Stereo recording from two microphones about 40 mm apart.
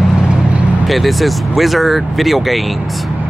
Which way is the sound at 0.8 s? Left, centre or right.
Centre.